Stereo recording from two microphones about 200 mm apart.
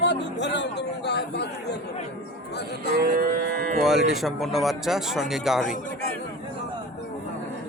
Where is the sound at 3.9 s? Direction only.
Centre (ahead or behind).